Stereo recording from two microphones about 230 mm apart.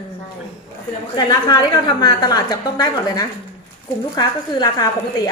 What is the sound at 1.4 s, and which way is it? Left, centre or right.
A woman's voice, centre.